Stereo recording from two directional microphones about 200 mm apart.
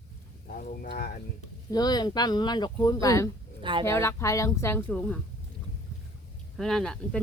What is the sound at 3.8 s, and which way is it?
Speech, 15° left (ahead or behind).